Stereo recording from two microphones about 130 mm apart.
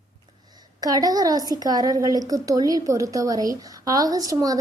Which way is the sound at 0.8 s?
30° right (ahead or behind).